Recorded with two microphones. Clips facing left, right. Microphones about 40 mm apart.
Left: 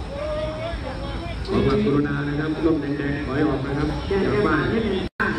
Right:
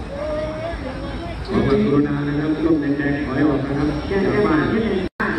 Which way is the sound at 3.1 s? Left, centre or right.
Centre.